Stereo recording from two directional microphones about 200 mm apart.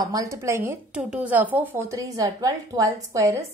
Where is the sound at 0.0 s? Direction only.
15° right (ahead or behind).